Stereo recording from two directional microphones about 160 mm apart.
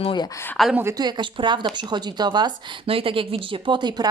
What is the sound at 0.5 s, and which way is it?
Speech, centre (ahead or behind).